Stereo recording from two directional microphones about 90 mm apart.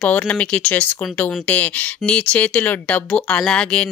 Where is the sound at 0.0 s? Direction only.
15° left (ahead or behind).